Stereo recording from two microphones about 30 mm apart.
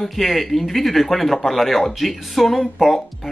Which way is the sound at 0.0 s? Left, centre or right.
Centre.